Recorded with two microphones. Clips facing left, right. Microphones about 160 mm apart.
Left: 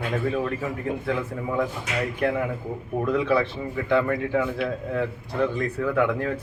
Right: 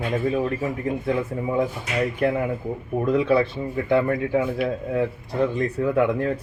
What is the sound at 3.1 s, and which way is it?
A man's voice, 35° right (ahead or behind).